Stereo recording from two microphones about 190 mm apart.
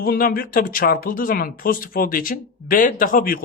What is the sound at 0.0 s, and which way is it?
Speech, 50° left (ahead or behind).